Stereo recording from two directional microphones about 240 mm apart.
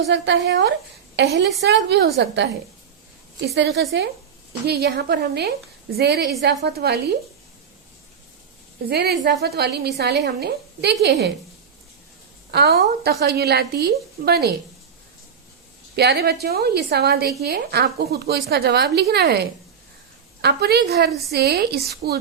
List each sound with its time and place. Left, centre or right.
0.1 s a woman's voice: right
3.8 s a woman's voice: right
8.9 s a woman's voice: right
12.5 s a woman's voice: right
16.0 s a woman's voice: right